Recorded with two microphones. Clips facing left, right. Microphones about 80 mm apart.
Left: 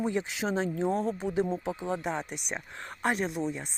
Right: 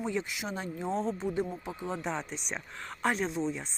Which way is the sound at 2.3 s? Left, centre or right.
Left.